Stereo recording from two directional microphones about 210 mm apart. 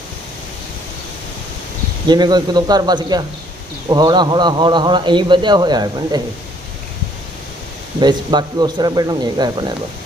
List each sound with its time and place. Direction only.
2.0 s a man's voice: 20° right (ahead or behind)
8.0 s a man's voice: 20° right (ahead or behind)